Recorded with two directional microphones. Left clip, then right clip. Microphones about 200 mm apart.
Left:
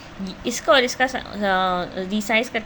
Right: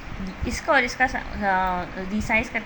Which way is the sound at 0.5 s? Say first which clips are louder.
Left 3 dB; 40° left (ahead or behind).